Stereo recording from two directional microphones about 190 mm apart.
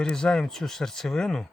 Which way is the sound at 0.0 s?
5° left (ahead or behind).